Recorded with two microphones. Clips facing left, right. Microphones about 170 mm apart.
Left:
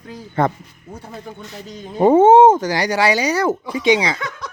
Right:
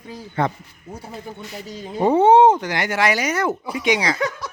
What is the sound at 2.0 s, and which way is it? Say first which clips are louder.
Speech: left 4 dB; 50° left (ahead or behind).